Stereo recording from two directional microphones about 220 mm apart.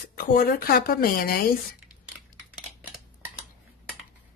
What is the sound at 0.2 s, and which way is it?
Speech, 45° left (ahead or behind).